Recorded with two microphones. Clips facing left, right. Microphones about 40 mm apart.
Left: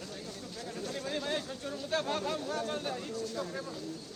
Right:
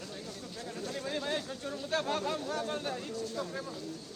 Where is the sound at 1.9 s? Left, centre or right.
Right.